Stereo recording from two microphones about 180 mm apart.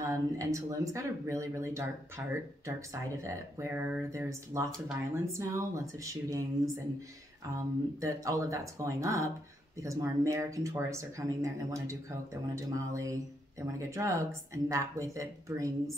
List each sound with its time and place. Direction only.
0.0 s speech: 15° right (ahead or behind)
7.5 s speech: 15° right (ahead or behind)